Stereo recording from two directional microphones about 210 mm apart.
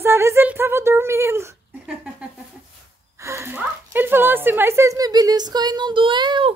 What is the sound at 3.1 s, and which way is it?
Speech, 15° right (ahead or behind).